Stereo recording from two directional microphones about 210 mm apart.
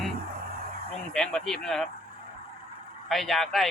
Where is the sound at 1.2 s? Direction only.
5° left (ahead or behind).